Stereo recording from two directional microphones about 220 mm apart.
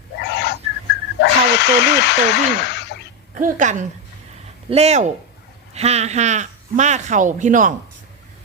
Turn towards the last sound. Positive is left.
turn(degrees=-35)  # may be behind; listen again after turning